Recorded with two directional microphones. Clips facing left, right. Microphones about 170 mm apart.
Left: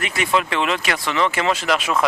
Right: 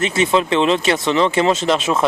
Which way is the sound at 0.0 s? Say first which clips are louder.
Right 5 dB; 25° right (ahead or behind).